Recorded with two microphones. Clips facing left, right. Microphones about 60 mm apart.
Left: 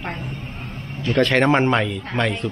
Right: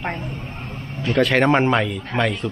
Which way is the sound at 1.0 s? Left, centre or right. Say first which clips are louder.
Even; centre.